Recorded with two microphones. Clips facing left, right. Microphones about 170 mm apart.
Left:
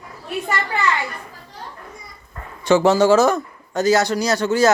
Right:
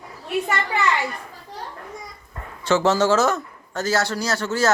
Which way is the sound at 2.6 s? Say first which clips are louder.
Left 4 dB; 15° left (ahead or behind).